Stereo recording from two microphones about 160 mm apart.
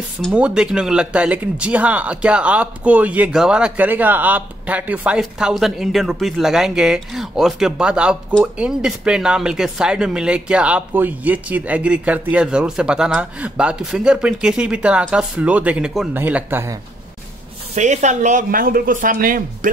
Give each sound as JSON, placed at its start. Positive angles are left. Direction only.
{"t": 0.3, "sound": "speech", "side_deg": -5}
{"t": 17.7, "sound": "speech", "side_deg": -45}